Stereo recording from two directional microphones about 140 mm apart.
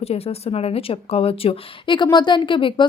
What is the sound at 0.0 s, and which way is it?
Speech, 45° left (ahead or behind).